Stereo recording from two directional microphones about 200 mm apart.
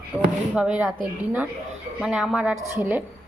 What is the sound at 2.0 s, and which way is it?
A woman's voice, centre (ahead or behind).